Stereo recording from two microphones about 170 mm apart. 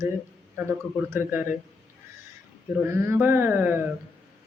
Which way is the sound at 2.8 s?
15° right (ahead or behind).